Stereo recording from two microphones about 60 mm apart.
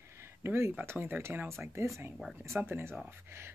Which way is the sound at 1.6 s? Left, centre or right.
Right.